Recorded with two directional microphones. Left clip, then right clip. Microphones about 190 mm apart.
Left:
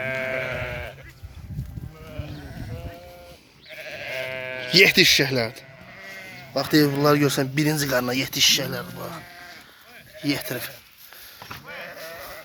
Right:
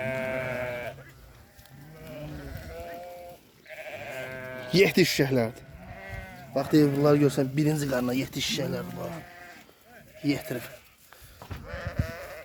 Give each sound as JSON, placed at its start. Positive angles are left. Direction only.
{"t": 0.0, "sound": "sheep", "side_deg": 50}
{"t": 3.8, "sound": "sheep", "side_deg": 40}
{"t": 4.6, "sound": "speech", "side_deg": -10}
{"t": 6.5, "sound": "a man's voice", "side_deg": -5}
{"t": 9.0, "sound": "speech", "side_deg": 10}
{"t": 10.5, "sound": "a man's voice", "side_deg": -5}